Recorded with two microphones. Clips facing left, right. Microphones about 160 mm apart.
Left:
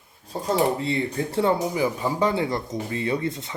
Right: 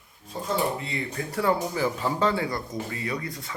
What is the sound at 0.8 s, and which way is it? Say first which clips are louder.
Speech: left 7 dB; 30° left (ahead or behind).